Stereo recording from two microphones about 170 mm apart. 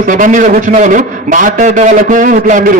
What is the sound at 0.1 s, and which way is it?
A man's voice, 50° right (ahead or behind).